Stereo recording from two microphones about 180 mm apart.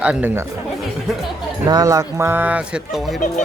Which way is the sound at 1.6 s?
20° right (ahead or behind).